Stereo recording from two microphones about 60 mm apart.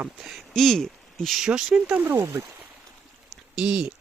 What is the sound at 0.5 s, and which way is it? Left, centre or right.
Speech, centre.